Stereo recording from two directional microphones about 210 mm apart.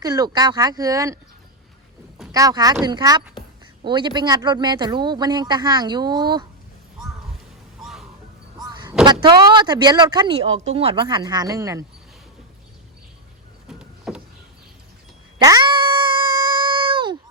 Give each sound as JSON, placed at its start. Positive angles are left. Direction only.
{"t": 0.0, "sound": "speech", "side_deg": -15}
{"t": 2.3, "sound": "speech", "side_deg": -15}
{"t": 8.5, "sound": "vehicle", "side_deg": -20}
{"t": 9.2, "sound": "speech", "side_deg": -20}
{"t": 13.7, "sound": "vehicle", "side_deg": -5}
{"t": 15.4, "sound": "a sound", "side_deg": -15}